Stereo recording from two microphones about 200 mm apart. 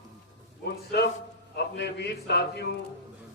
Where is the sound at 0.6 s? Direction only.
55° left (ahead or behind).